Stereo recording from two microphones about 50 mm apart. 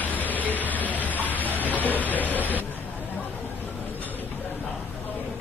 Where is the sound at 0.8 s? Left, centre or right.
Left.